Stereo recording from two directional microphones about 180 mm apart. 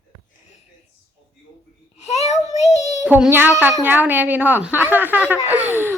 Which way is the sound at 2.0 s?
35° left (ahead or behind).